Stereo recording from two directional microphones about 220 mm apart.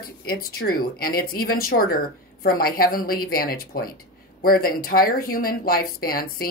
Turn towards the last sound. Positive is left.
turn(degrees=40)  # may be behind; listen again after turning